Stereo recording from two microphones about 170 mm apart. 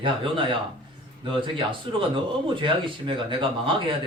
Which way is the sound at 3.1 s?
30° right (ahead or behind).